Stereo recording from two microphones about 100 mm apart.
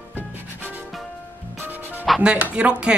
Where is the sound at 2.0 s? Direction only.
Centre (ahead or behind).